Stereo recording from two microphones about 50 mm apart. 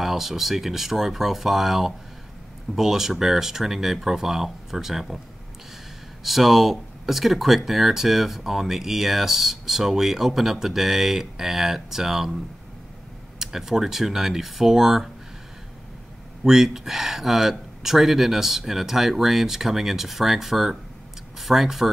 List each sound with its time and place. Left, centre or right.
0.0 s speech: centre
6.2 s speech: centre
13.4 s speech: centre
16.4 s speech: centre